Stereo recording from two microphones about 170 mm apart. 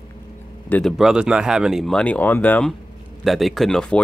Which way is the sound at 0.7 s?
5° left (ahead or behind).